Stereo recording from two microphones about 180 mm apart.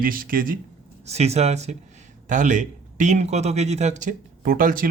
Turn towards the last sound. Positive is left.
turn(degrees=-50)  # may be behind; listen again after turning